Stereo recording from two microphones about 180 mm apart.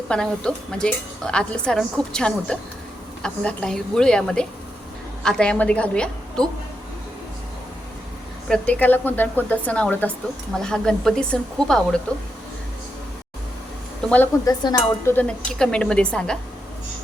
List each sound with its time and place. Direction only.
0.1 s speech: 5° left (ahead or behind)
8.4 s a woman's voice: 5° left (ahead or behind)
14.4 s speech: 20° left (ahead or behind); by 16.4 s 5° left (ahead or behind)